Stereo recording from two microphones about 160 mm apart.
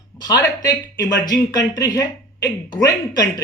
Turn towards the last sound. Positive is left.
turn(degrees=25)  # may be behind; listen again after turning